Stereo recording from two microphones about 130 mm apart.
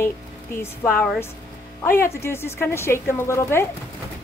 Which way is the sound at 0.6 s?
15° left (ahead or behind).